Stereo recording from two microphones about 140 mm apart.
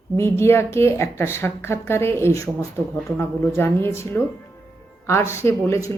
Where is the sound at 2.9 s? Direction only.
Centre (ahead or behind).